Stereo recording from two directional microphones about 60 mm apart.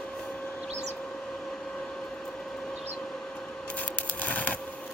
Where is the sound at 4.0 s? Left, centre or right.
Left.